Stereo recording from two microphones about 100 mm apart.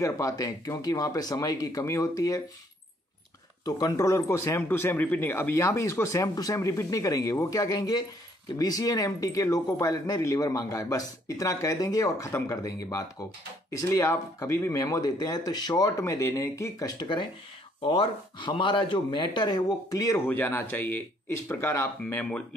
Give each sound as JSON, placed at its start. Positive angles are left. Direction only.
{"t": 0.0, "sound": "speech", "side_deg": 30}
{"t": 3.6, "sound": "speech", "side_deg": 40}
{"t": 17.0, "sound": "speech", "side_deg": 50}
{"t": 20.2, "sound": "speech", "side_deg": 20}